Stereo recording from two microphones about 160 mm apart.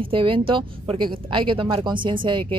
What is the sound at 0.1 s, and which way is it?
Speech, 35° right (ahead or behind).